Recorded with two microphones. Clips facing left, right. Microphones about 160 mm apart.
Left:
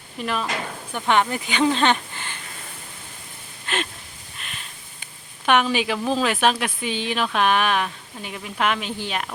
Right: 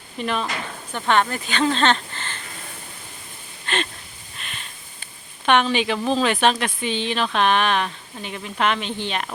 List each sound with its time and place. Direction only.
0.2 s speech: 5° left (ahead or behind)
3.7 s a sound: 5° left (ahead or behind)
5.5 s speech: 5° left (ahead or behind)